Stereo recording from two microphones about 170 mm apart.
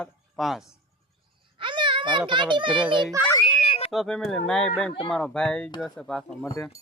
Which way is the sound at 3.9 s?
Centre (ahead or behind).